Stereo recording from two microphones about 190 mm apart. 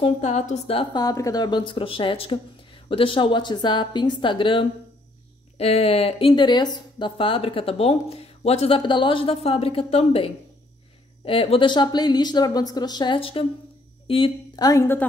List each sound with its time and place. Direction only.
0.0 s speech: 35° left (ahead or behind); by 15.0 s 15° left (ahead or behind)